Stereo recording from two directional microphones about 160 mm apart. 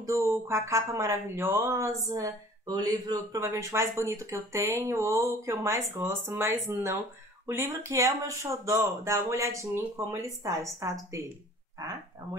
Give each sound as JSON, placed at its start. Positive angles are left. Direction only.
{"t": 0.0, "sound": "a woman's voice", "side_deg": -20}